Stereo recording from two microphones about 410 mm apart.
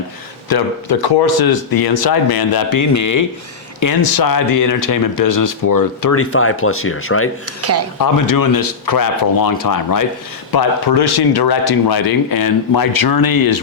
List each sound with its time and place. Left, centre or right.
0.4 s speech: left
6.1 s speech: left
7.6 s speech: right
7.9 s speech: left
10.5 s speech: left